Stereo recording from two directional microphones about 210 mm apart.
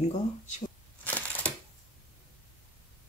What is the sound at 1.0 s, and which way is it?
Crushing, 10° left (ahead or behind).